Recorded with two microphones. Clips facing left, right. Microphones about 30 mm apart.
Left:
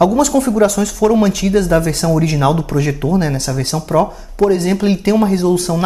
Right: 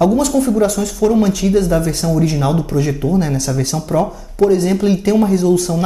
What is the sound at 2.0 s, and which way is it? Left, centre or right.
Speech, left.